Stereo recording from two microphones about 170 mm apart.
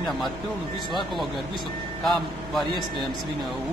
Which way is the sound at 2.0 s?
Centre (ahead or behind).